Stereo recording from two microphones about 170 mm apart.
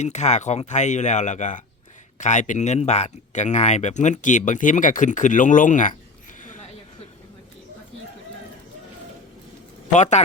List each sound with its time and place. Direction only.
0.0 s speech: 40° left (ahead or behind)
9.9 s speech: 45° left (ahead or behind)